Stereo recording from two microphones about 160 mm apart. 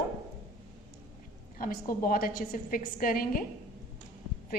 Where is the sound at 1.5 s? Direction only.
60° left (ahead or behind).